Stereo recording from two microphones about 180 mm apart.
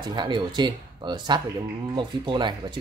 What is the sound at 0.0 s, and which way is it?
Speech, 25° right (ahead or behind).